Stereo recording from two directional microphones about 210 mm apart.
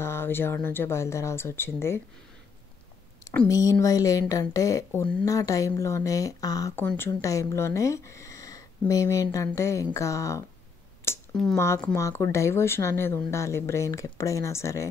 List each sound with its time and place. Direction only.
0.0 s speech: 10° left (ahead or behind)
3.3 s speech: 15° left (ahead or behind)